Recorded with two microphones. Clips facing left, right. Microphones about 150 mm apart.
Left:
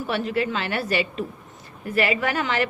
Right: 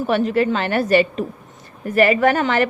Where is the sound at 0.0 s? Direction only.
45° right (ahead or behind).